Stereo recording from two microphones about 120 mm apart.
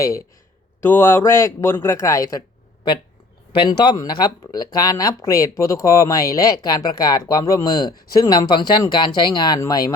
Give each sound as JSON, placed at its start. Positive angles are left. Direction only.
{"t": 0.8, "sound": "a man's voice", "side_deg": 20}
{"t": 3.5, "sound": "a man's voice", "side_deg": 40}